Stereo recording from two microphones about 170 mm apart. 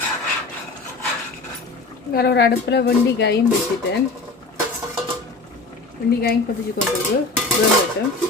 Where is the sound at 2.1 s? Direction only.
75° left (ahead or behind).